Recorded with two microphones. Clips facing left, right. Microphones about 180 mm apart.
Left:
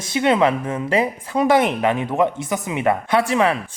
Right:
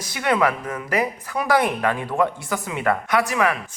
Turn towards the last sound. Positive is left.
turn(degrees=30)  # may be behind; listen again after turning